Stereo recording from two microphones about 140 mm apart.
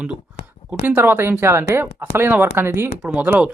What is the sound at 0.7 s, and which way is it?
Speech, 15° right (ahead or behind).